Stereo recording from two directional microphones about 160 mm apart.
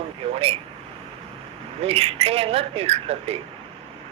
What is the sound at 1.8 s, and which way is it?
Speech, 40° right (ahead or behind).